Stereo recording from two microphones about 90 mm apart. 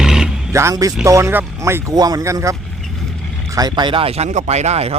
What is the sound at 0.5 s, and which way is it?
Speech, 35° right (ahead or behind).